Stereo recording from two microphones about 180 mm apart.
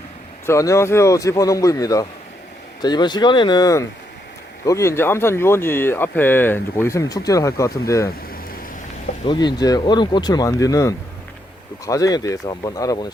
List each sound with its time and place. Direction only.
0.4 s speech: 15° left (ahead or behind)
9.2 s speech: 25° left (ahead or behind)